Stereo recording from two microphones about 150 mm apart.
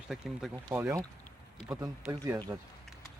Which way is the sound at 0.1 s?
5° right (ahead or behind).